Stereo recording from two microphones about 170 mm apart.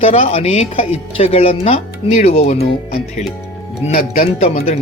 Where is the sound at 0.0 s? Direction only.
35° left (ahead or behind).